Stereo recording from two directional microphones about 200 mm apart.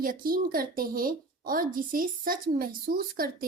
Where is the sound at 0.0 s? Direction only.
45° right (ahead or behind).